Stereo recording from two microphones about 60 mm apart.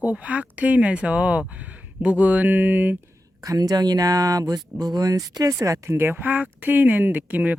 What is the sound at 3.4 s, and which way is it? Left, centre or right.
Speech, right.